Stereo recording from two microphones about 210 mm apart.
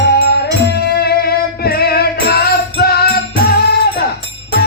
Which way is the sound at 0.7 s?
50° left (ahead or behind).